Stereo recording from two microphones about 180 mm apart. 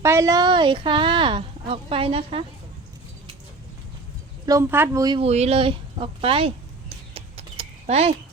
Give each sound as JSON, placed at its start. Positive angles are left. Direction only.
{"t": 0.0, "sound": "speech", "side_deg": -15}
{"t": 4.4, "sound": "speech", "side_deg": -15}
{"t": 5.0, "sound": "speech", "side_deg": -30}
{"t": 7.1, "sound": "a sound", "side_deg": -30}